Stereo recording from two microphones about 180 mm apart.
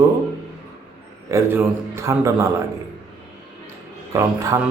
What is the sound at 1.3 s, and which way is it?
A man's voice, 15° right (ahead or behind).